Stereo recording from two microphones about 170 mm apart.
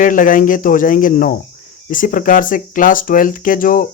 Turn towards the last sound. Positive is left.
turn(degrees=55)  # may be behind; listen again after turning